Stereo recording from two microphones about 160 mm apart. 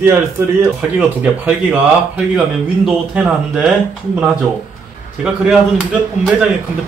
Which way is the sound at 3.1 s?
5° right (ahead or behind).